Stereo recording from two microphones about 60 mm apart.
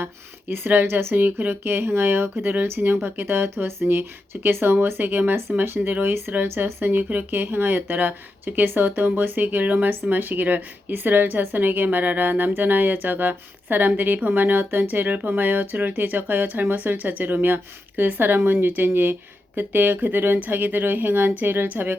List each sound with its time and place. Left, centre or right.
0.0 s speech: right